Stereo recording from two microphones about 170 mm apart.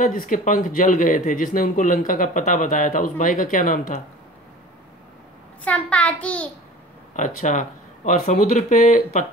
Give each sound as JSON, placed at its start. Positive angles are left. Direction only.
{"t": 0.0, "sound": "speech", "side_deg": 50}
{"t": 5.6, "sound": "a child's voice", "side_deg": 10}
{"t": 7.2, "sound": "speech", "side_deg": 50}